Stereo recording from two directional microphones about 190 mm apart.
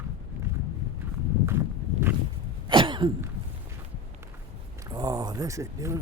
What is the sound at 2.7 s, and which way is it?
Cough, 25° right (ahead or behind).